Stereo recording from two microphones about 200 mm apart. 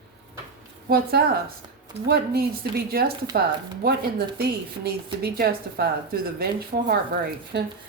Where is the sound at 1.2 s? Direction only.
55° right (ahead or behind).